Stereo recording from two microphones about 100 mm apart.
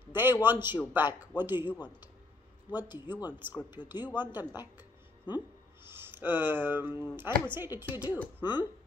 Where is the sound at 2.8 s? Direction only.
20° right (ahead or behind).